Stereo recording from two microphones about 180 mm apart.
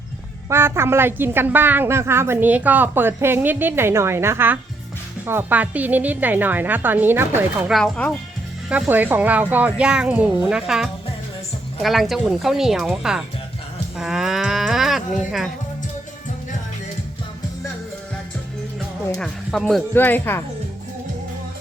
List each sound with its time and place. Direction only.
0.5 s a woman's voice: 15° right (ahead or behind)
7.7 s speech: centre (ahead or behind)
8.7 s a woman's voice: 10° right (ahead or behind)
19.1 s speech: centre (ahead or behind)